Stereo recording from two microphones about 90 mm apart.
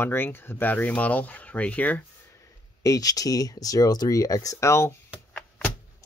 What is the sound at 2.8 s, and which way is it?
Speech, 40° left (ahead or behind).